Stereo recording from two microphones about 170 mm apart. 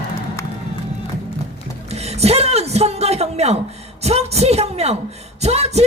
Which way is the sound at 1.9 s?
40° right (ahead or behind).